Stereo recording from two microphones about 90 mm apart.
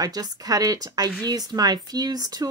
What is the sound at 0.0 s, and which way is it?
Speech, 45° right (ahead or behind).